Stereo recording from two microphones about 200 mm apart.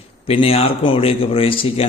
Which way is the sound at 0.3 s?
30° left (ahead or behind).